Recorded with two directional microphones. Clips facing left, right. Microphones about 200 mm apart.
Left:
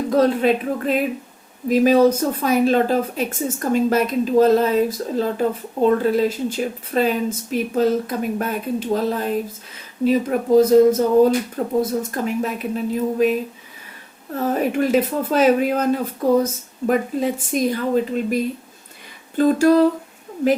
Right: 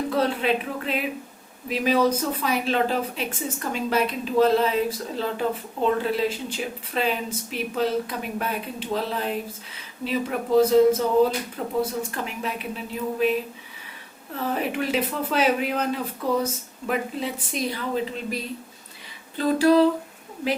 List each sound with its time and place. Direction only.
0.1 s speech: 40° left (ahead or behind)
14.3 s speech: 45° left (ahead or behind)